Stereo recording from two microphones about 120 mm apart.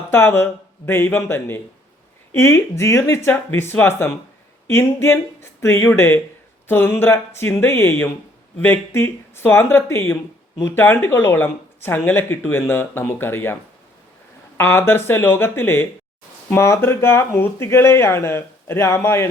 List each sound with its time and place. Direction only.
0.1 s speech: 20° left (ahead or behind)
14.6 s speech: 20° left (ahead or behind)